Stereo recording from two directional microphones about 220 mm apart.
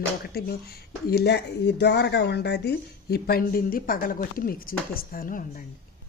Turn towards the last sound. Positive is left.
turn(degrees=40)  # may be behind; listen again after turning